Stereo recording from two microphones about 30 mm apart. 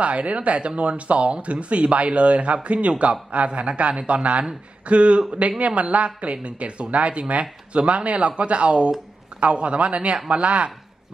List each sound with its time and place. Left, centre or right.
0.0 s speech: right